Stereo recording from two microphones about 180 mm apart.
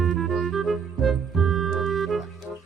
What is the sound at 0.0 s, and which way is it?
Music, centre (ahead or behind).